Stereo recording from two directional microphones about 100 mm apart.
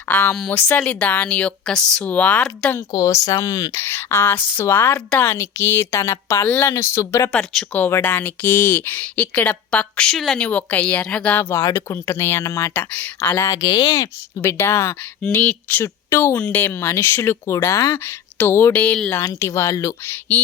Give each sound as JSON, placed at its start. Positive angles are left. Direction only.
{"t": 0.1, "sound": "speech", "side_deg": 20}
{"t": 2.9, "sound": "speech", "side_deg": 35}
{"t": 7.3, "sound": "speech", "side_deg": 15}
{"t": 11.5, "sound": "speech", "side_deg": 25}
{"t": 12.7, "sound": "speech", "side_deg": 15}
{"t": 14.4, "sound": "speech", "side_deg": 25}
{"t": 19.2, "sound": "speech", "side_deg": 30}